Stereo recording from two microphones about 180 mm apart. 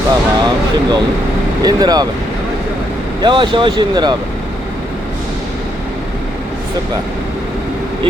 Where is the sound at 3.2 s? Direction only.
25° right (ahead or behind).